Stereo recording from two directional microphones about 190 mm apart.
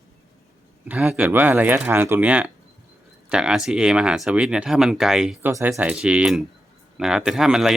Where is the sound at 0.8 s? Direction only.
5° right (ahead or behind).